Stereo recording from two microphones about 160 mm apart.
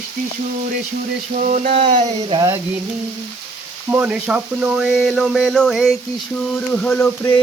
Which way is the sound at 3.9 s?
10° right (ahead or behind).